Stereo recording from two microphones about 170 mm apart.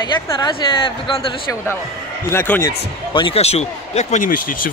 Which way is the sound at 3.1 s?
30° left (ahead or behind).